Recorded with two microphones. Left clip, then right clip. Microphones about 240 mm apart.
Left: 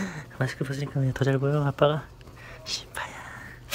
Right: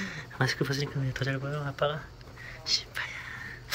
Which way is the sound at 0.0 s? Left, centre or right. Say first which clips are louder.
Left 1 dB; left.